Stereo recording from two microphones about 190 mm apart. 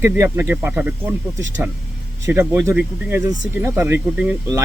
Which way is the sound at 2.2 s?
15° right (ahead or behind).